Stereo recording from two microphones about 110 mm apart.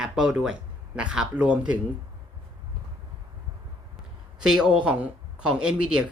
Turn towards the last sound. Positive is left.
turn(degrees=-5)  # may be behind; listen again after turning